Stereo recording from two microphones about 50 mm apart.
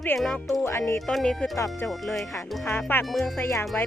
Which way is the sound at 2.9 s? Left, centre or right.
Left.